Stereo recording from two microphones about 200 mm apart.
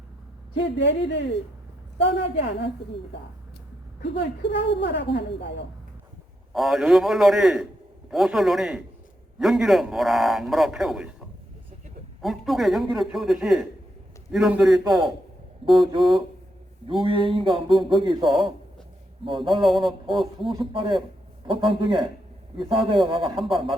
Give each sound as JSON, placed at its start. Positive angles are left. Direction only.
{"t": 0.5, "sound": "a woman's voice", "side_deg": 65}
{"t": 6.5, "sound": "a man's voice", "side_deg": 0}
{"t": 12.2, "sound": "a man's voice", "side_deg": 0}
{"t": 15.9, "sound": "speech", "side_deg": -25}
{"t": 19.6, "sound": "a man's voice", "side_deg": 0}
{"t": 20.4, "sound": "speech", "side_deg": -20}